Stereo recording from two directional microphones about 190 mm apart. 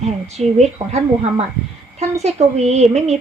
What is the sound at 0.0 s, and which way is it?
Speech, 35° right (ahead or behind).